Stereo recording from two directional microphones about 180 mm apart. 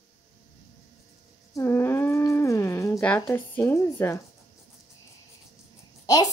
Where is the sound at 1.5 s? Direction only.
15° left (ahead or behind).